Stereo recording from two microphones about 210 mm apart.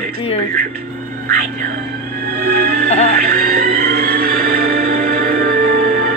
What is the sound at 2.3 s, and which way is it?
Music, 45° right (ahead or behind).